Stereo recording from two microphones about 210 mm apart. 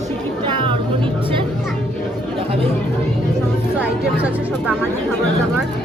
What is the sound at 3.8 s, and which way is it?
Speech, 5° right (ahead or behind).